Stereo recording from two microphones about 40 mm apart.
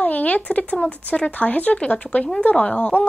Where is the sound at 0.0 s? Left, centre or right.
Left.